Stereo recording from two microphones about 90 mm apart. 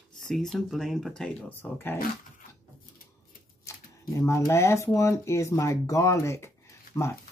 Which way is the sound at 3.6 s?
35° left (ahead or behind).